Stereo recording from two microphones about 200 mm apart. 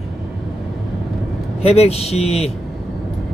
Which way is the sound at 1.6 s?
30° left (ahead or behind).